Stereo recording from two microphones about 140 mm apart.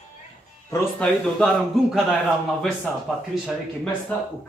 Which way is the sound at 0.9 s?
5° left (ahead or behind).